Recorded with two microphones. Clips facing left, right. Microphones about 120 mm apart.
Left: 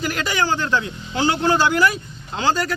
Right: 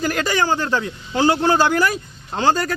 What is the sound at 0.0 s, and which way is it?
Speech, 40° right (ahead or behind).